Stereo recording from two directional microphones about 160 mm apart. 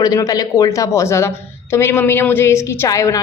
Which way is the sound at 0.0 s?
20° left (ahead or behind).